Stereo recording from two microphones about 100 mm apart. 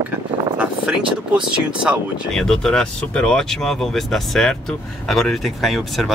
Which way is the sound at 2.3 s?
5° left (ahead or behind).